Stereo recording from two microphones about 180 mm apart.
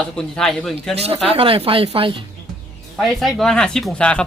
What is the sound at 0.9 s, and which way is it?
Speech, 35° right (ahead or behind).